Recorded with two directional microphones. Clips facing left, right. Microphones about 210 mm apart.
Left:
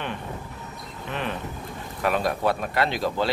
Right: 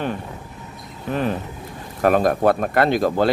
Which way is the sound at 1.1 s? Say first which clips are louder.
Right 8 dB; 40° right (ahead or behind).